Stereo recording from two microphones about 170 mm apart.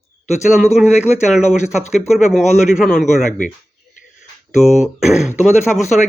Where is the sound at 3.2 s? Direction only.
50° left (ahead or behind).